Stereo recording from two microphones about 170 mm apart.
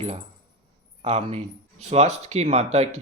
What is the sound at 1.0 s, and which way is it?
Speech, 40° right (ahead or behind).